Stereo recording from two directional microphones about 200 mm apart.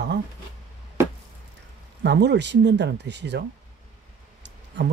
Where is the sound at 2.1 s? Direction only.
60° right (ahead or behind).